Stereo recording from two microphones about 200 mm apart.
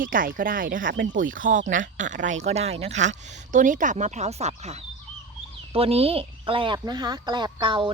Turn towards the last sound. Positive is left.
turn(degrees=-25)  # may be behind; listen again after turning